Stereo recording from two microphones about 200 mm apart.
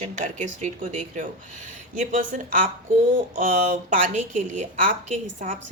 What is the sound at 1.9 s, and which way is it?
A woman's voice, 40° right (ahead or behind).